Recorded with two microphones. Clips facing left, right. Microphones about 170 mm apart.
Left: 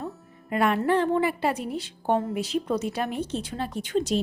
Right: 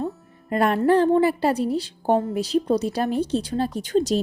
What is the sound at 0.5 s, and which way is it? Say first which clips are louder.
A woman's voice: right 4 dB; 40° right (ahead or behind).